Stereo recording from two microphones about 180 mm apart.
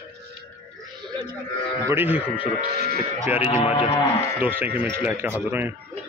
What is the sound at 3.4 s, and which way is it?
Speech, 35° left (ahead or behind).